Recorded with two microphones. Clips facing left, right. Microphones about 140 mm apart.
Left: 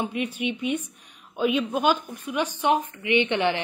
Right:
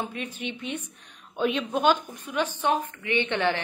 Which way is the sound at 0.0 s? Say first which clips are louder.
Left 5 dB; 15° left (ahead or behind).